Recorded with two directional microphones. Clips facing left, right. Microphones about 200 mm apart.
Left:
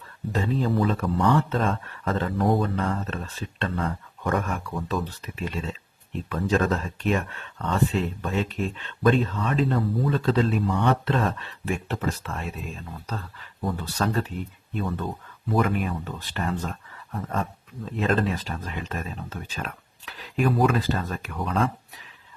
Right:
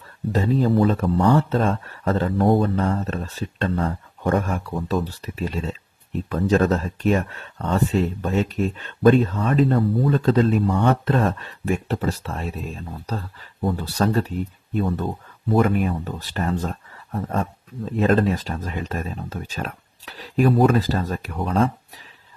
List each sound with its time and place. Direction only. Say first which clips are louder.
0.3 s speech: right 5 dB; 40° right (ahead or behind)
15.5 s speech: right 5 dB; 45° right (ahead or behind)